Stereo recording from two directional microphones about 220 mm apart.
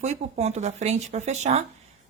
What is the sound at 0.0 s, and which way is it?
A woman's voice, 30° right (ahead or behind).